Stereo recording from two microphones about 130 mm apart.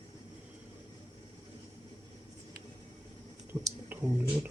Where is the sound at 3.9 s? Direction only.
15° right (ahead or behind).